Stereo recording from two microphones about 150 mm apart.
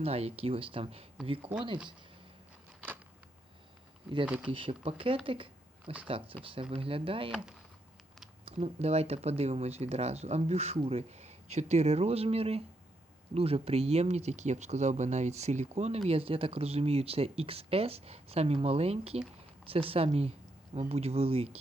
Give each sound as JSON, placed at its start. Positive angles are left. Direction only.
{"t": 0.0, "sound": "speech", "side_deg": -45}
{"t": 4.4, "sound": "speech", "side_deg": -35}
{"t": 7.3, "sound": "speech", "side_deg": -5}
{"t": 8.4, "sound": "speech", "side_deg": -45}